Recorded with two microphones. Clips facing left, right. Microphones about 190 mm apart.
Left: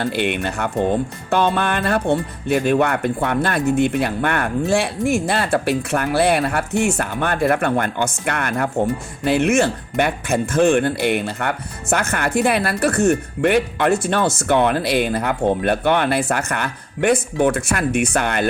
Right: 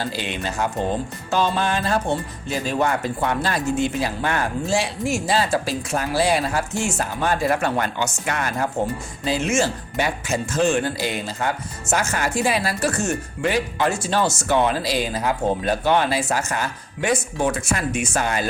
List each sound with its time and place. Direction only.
0.0 s speech: 60° left (ahead or behind)